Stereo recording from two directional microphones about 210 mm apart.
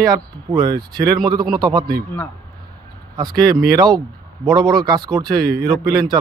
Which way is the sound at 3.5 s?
20° right (ahead or behind).